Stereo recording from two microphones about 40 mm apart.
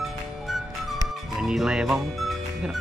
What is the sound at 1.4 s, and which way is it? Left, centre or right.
Speech, centre.